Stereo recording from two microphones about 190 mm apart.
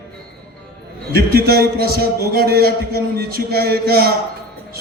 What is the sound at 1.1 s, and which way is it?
A man's voice, 55° right (ahead or behind).